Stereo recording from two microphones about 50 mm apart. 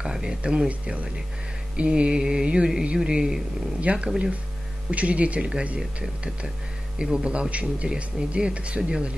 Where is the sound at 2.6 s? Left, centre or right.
Centre.